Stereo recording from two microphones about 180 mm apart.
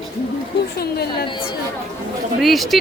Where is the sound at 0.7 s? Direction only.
60° left (ahead or behind).